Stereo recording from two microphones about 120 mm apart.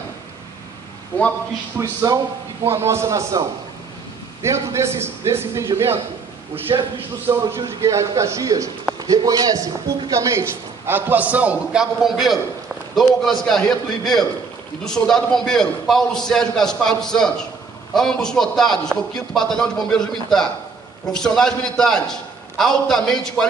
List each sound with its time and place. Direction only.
1.8 s a man's voice: 25° right (ahead or behind); by 23.4 s 5° left (ahead or behind)